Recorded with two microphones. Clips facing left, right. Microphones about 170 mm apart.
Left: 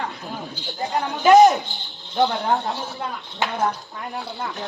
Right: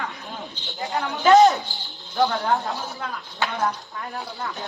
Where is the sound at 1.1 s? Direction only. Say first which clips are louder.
Left 2 dB; 20° left (ahead or behind).